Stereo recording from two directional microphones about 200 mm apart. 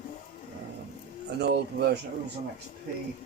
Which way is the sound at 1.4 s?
55° right (ahead or behind).